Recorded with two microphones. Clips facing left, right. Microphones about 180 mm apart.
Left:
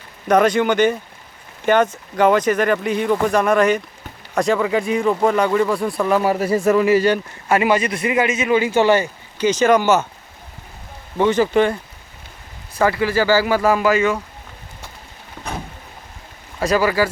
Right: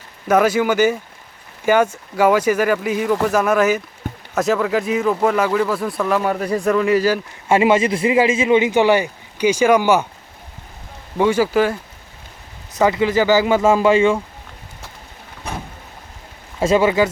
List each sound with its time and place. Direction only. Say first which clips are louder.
0.3 s a man's voice: even; 5° right (ahead or behind)
7.4 s a man's voice: right 3 dB; 25° right (ahead or behind)
11.2 s speech: even; 10° right (ahead or behind)
12.7 s a man's voice: right 2 dB; 20° right (ahead or behind)
16.6 s a man's voice: right 2 dB; 25° right (ahead or behind)